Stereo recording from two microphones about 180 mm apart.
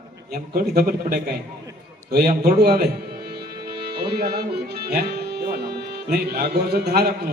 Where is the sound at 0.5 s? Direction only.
55° right (ahead or behind).